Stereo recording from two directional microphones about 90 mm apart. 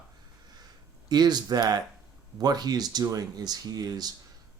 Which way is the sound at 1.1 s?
50° right (ahead or behind).